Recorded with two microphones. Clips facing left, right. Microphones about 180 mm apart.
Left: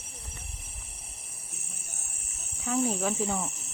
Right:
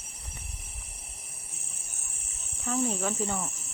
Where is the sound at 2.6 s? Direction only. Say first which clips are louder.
Left 1 dB; centre (ahead or behind).